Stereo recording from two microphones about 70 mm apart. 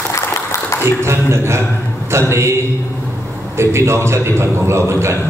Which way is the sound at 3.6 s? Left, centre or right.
Right.